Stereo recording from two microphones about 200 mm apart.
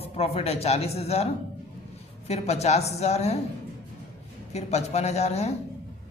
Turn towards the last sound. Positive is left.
turn(degrees=35)  # may be behind; listen again after turning